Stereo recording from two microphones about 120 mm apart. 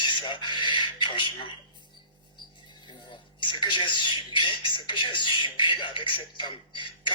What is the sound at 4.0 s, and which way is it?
Speech, 45° left (ahead or behind).